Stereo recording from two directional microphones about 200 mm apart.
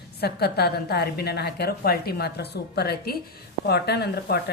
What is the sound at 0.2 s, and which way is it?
A woman's voice, 55° left (ahead or behind).